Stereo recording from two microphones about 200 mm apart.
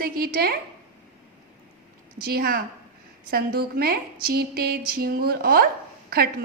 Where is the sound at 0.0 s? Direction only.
50° right (ahead or behind).